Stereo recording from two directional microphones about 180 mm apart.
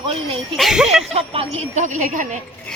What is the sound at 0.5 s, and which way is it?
Speech, centre (ahead or behind).